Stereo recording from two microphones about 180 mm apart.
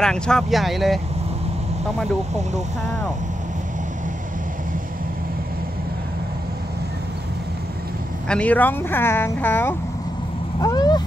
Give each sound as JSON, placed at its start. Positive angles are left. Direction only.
{"t": 0.0, "sound": "speech", "side_deg": 5}
{"t": 8.3, "sound": "speech", "side_deg": 5}
{"t": 10.6, "sound": "cat", "side_deg": 20}